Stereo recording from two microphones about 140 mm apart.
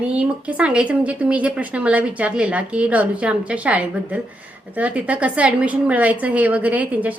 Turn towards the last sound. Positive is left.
turn(degrees=-10)  # may be behind; listen again after turning